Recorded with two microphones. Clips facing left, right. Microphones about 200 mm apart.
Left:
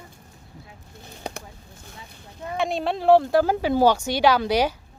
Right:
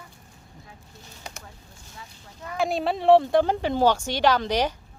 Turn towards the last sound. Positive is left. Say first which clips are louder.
# left 3 dB
turn(degrees=10)  # may be behind; listen again after turning